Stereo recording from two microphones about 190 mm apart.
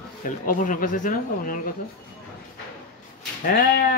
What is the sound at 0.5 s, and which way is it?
Speech, 45° left (ahead or behind).